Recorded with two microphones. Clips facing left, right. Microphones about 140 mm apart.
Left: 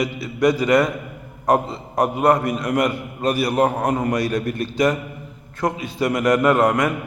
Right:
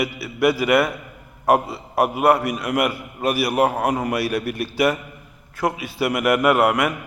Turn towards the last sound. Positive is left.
turn(degrees=-5)  # may be behind; listen again after turning